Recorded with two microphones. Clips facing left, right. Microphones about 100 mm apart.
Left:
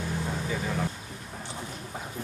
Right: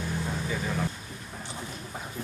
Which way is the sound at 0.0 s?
20° left (ahead or behind).